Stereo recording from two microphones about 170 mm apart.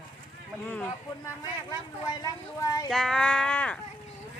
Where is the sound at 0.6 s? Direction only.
10° left (ahead or behind).